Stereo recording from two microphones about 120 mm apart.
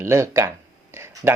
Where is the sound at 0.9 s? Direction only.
20° right (ahead or behind).